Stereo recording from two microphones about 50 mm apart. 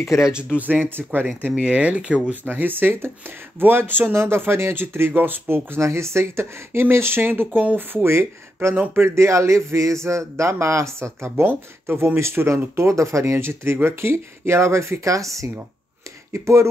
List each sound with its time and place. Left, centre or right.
0.2 s speech: centre
0.6 s speech: right
1.6 s speech: right
2.4 s speech: right
4.1 s speech: right
5.8 s speech: right
8.6 s speech: right
11.4 s speech: right
12.2 s speech: right
12.7 s speech: right
16.3 s speech: right